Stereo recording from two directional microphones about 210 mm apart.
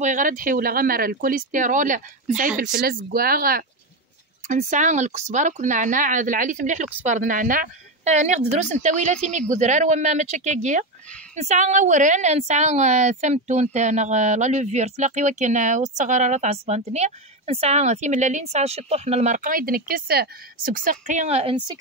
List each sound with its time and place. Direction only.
0.0 s a woman's voice: 35° right (ahead or behind)
2.5 s speech: centre (ahead or behind)
2.8 s a woman's voice: 45° right (ahead or behind); by 21.7 s 25° right (ahead or behind)